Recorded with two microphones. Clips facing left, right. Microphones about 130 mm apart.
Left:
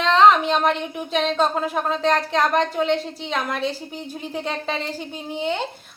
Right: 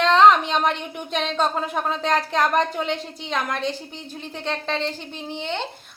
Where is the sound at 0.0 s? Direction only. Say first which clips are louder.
Even; centre (ahead or behind).